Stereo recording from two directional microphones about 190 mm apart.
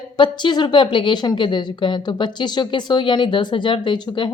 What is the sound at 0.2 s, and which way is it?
A woman's voice, 25° left (ahead or behind).